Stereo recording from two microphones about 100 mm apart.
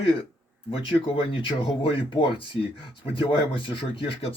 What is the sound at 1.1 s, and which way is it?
Speech, 65° left (ahead or behind).